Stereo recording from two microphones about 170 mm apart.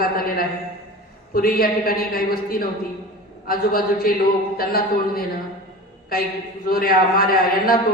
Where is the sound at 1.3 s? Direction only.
60° left (ahead or behind).